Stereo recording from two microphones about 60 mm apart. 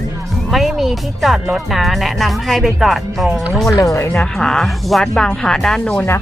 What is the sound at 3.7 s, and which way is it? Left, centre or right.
Speech, left.